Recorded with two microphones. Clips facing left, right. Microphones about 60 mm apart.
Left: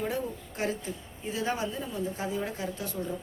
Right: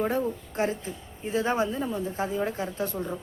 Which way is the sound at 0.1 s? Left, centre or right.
Right.